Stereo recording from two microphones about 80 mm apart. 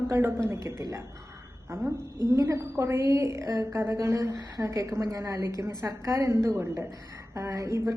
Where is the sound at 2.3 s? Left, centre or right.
Right.